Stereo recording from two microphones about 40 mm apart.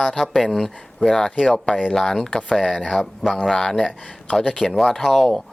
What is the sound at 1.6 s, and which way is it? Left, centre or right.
Speech, left.